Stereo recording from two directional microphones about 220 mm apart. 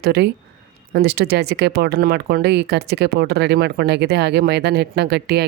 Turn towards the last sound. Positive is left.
turn(degrees=-50)  # may be behind; listen again after turning